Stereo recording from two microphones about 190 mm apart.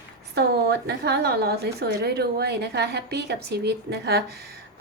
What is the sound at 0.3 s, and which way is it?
A woman's voice, 55° right (ahead or behind).